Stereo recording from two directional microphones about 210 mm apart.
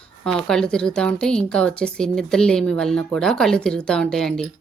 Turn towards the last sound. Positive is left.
turn(degrees=0)  # may be behind; listen again after turning